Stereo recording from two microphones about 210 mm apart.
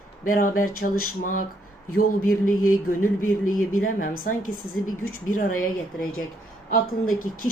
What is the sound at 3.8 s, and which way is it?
A woman's voice, 40° left (ahead or behind).